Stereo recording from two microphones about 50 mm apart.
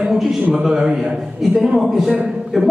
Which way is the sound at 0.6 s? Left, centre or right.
Centre.